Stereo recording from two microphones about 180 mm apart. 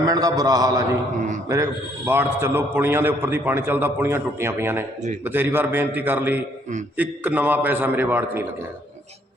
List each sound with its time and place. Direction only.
0.0 s a man's voice: 20° right (ahead or behind)